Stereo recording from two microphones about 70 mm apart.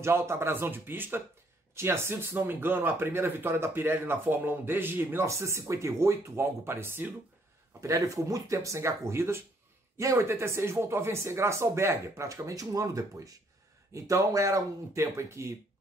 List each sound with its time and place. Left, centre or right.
0.0 s speech: right
5.2 s speech: right
7.8 s speech: right